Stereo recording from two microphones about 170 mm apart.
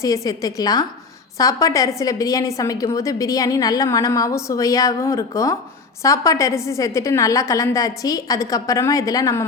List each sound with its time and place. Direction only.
0.0 s a woman's voice: 20° left (ahead or behind)